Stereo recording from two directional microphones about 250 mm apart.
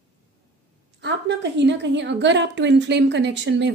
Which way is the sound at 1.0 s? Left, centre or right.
Right.